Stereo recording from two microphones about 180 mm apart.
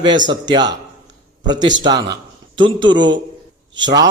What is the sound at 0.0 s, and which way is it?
A man's voice, 25° right (ahead or behind).